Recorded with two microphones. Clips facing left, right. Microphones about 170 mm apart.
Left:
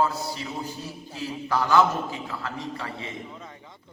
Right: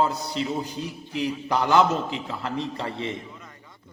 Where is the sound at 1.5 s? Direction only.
20° right (ahead or behind).